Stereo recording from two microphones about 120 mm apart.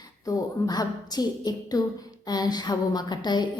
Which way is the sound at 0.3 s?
35° left (ahead or behind).